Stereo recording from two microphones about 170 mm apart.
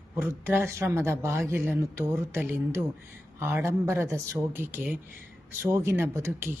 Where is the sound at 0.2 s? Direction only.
15° right (ahead or behind).